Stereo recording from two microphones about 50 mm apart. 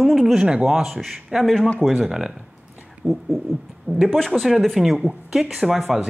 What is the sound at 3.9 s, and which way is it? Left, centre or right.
Speech, left.